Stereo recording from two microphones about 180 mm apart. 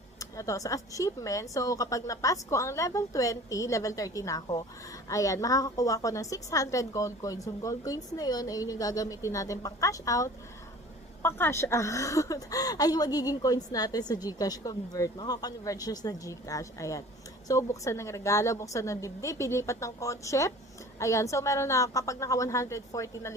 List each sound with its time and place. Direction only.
0.2 s a woman's voice: 20° left (ahead or behind)